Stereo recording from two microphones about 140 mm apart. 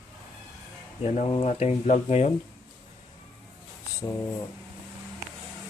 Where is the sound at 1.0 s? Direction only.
50° left (ahead or behind).